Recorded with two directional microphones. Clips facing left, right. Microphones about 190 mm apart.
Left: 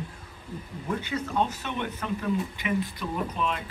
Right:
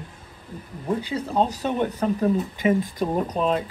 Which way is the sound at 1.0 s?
35° right (ahead or behind).